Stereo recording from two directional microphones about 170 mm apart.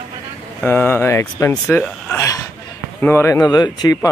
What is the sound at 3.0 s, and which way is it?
Speech, 15° left (ahead or behind).